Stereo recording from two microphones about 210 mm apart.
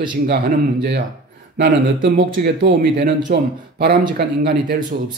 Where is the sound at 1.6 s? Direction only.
50° right (ahead or behind).